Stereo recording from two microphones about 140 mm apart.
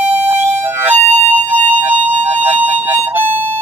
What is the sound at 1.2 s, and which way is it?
Music, 10° right (ahead or behind).